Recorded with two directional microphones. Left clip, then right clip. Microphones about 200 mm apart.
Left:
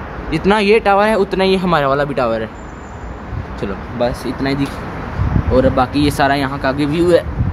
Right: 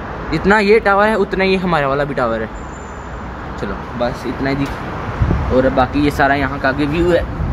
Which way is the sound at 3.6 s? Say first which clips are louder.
Left 2 dB; 35° left (ahead or behind).